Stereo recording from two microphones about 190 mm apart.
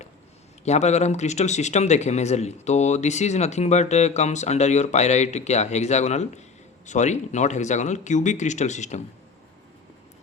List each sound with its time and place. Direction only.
0.6 s speech: 35° left (ahead or behind)